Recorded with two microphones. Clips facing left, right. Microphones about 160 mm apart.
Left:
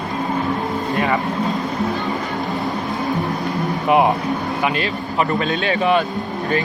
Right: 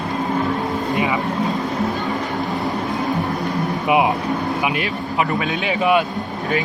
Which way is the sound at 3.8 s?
10° right (ahead or behind).